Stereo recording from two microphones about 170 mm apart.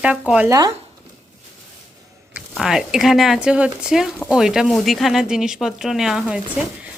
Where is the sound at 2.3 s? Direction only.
5° right (ahead or behind).